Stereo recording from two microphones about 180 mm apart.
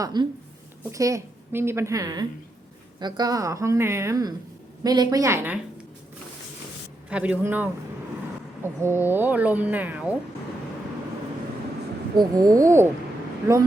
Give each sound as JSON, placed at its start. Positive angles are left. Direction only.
{"t": 0.0, "sound": "a woman's voice", "side_deg": -25}
{"t": 7.1, "sound": "speech", "side_deg": -5}
{"t": 12.1, "sound": "a woman's voice", "side_deg": -20}